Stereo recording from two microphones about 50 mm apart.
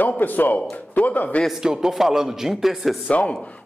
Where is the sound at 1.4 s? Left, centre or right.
Centre.